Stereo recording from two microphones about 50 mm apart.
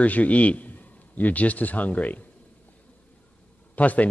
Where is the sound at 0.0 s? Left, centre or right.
Left.